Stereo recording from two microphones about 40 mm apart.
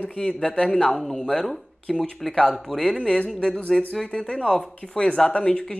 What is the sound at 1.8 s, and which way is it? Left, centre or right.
Speech, left.